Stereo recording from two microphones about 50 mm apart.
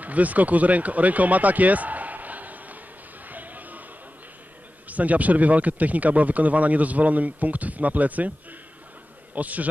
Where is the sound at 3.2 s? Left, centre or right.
Right.